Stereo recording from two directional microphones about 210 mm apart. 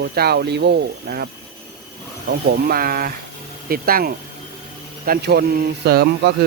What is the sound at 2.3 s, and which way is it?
Speech, 45° right (ahead or behind).